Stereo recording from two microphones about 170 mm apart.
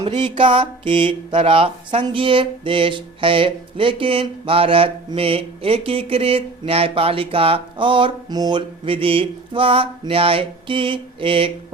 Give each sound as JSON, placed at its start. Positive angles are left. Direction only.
{"t": 0.0, "sound": "speech", "side_deg": -30}